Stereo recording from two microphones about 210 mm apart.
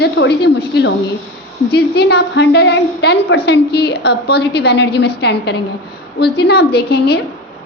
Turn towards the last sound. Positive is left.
turn(degrees=50)  # may be behind; listen again after turning